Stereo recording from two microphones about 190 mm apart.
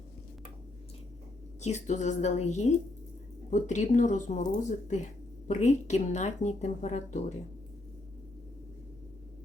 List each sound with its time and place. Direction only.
1.6 s speech: 35° left (ahead or behind)